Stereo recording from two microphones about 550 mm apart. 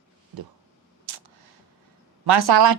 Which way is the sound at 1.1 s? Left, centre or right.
Right.